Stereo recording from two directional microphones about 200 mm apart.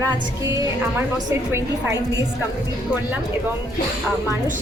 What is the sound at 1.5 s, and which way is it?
Speech, 15° right (ahead or behind).